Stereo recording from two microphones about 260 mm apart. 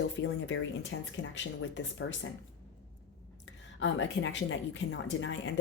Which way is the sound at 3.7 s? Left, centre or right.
Left.